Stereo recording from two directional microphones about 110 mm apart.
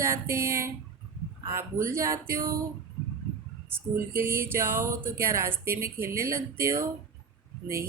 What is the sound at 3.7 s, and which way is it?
Speech, 20° right (ahead or behind).